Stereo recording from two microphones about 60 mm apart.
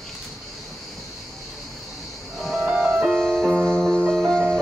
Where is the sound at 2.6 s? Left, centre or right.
Centre.